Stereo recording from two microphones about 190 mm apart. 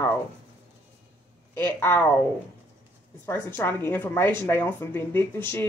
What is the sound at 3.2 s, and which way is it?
Speech, 10° left (ahead or behind).